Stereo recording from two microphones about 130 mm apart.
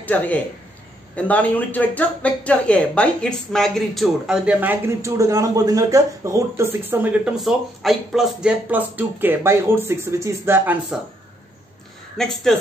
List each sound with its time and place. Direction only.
0.0 s a man's voice: 10° left (ahead or behind)
4.5 s a man's voice: 15° right (ahead or behind)
7.3 s speech: centre (ahead or behind)
12.2 s speech: 5° left (ahead or behind)